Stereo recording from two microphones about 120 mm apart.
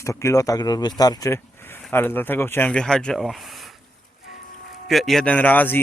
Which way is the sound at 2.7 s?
5° left (ahead or behind).